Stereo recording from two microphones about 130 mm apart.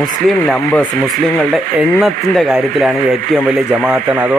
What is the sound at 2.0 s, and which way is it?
Speech, centre (ahead or behind).